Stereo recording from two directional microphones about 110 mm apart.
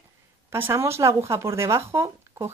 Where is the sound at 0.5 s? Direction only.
20° right (ahead or behind).